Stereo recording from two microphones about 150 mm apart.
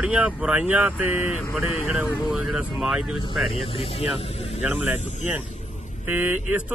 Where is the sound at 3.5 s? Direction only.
40° left (ahead or behind).